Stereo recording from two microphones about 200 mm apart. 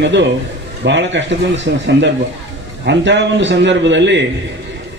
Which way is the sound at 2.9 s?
60° right (ahead or behind).